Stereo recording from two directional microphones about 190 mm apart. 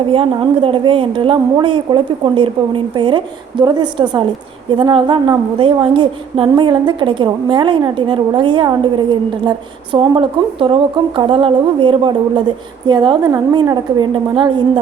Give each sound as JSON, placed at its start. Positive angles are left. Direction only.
{"t": 0.1, "sound": "a woman's voice", "side_deg": -25}